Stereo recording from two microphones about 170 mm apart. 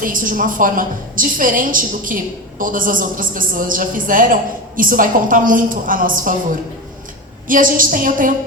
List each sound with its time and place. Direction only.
0.0 s a woman's voice: 55° right (ahead or behind)
7.4 s a woman's voice: 55° right (ahead or behind)